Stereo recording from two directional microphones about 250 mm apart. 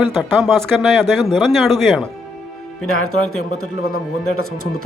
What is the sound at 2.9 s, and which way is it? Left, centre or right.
Speech, left.